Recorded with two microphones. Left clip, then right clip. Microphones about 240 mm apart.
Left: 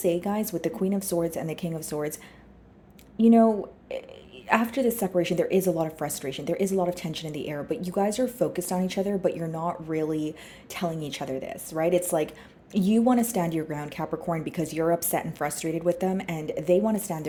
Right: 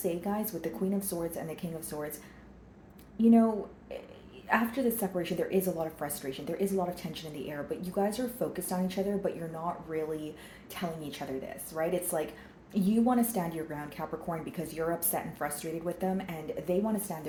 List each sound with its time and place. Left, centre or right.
0.0 s a woman's voice: left
3.2 s a woman's voice: left